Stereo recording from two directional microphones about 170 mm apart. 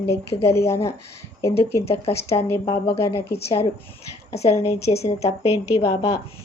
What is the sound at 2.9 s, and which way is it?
Speech, 15° left (ahead or behind).